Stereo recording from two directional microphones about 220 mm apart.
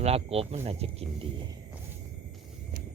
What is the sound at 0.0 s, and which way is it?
Speech, 25° right (ahead or behind).